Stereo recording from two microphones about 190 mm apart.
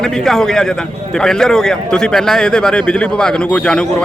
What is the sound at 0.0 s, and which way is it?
A man's voice, 5° left (ahead or behind).